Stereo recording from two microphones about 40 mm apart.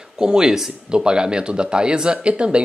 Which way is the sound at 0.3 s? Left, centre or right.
Right.